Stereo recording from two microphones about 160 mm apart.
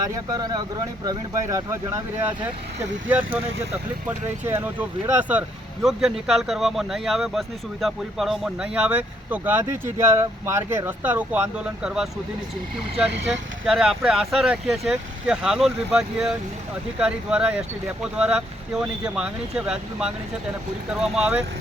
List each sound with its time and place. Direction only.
0.0 s speech: 25° right (ahead or behind)
4.4 s speech: 15° right (ahead or behind)
13.7 s speech: 5° right (ahead or behind)